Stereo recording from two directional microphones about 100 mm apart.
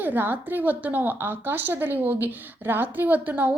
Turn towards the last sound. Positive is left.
turn(degrees=-20)  # may be behind; listen again after turning